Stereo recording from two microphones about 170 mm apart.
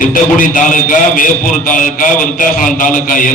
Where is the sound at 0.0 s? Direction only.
50° left (ahead or behind).